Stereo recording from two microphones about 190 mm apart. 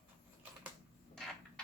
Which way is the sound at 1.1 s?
5° left (ahead or behind).